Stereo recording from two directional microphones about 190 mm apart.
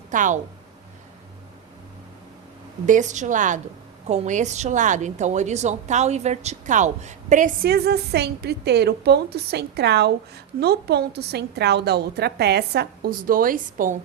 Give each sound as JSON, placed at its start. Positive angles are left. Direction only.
{"t": 0.1, "sound": "a woman's voice", "side_deg": -40}
{"t": 2.8, "sound": "a woman's voice", "side_deg": -40}